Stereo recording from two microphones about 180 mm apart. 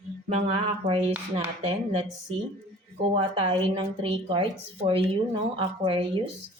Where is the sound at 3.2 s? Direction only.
30° right (ahead or behind).